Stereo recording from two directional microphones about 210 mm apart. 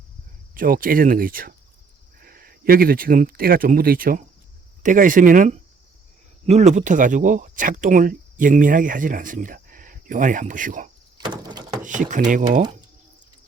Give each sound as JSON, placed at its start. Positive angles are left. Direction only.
{"t": 0.5, "sound": "speech", "side_deg": -40}
{"t": 11.2, "sound": "door", "side_deg": -20}
{"t": 11.8, "sound": "speech", "side_deg": -35}